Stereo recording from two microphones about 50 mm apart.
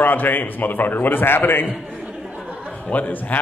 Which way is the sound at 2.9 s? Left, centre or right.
Left.